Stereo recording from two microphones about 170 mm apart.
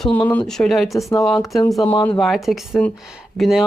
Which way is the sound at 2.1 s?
Centre (ahead or behind).